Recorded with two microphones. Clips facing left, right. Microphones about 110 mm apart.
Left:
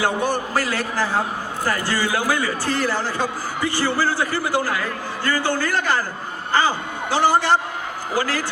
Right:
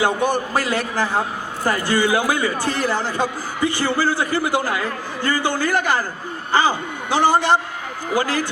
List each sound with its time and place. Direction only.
0.0 s a man's voice: 20° right (ahead or behind)